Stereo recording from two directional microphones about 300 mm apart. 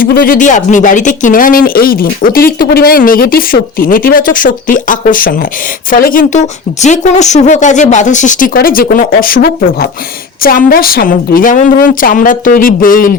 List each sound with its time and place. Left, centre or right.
0.0 s speech: left